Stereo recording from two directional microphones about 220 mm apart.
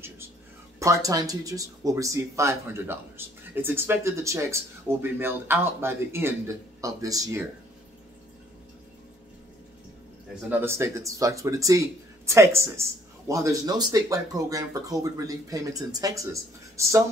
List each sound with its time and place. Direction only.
0.7 s speech: 15° right (ahead or behind)
10.5 s speech: 10° right (ahead or behind)